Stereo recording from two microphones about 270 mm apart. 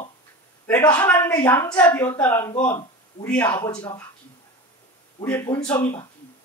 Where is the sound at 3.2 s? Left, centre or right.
Centre.